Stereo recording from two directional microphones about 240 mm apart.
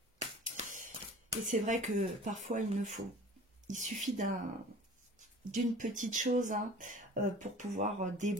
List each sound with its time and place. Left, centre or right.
0.2 s a sound: right
1.5 s speech: right
5.5 s speech: right